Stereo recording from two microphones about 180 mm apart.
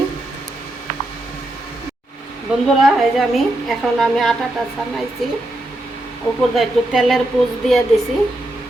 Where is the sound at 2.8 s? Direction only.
Centre (ahead or behind).